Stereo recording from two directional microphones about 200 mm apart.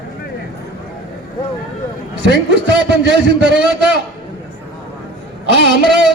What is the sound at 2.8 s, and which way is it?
Speech, 60° right (ahead or behind).